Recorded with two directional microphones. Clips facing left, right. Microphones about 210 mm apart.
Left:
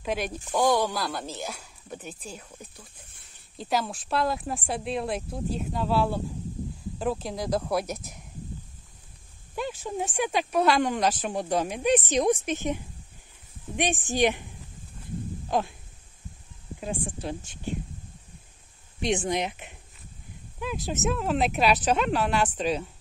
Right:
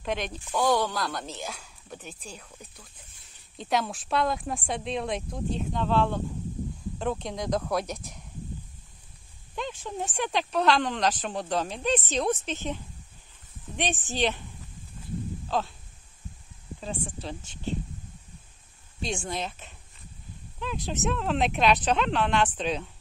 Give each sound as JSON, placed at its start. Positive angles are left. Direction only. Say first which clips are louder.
{"t": 0.0, "sound": "speech", "louder": "left 2 dB", "side_deg": 5}
{"t": 9.6, "sound": "speech", "louder": "left 3 dB", "side_deg": 10}
{"t": 15.4, "sound": "a sound", "louder": "left 3 dB", "side_deg": 15}
{"t": 16.8, "sound": "speech", "louder": "left 3 dB", "side_deg": 10}
{"t": 18.9, "sound": "speech", "louder": "left 6 dB", "side_deg": 20}